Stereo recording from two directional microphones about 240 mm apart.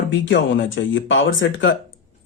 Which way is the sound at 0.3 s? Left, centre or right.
Left.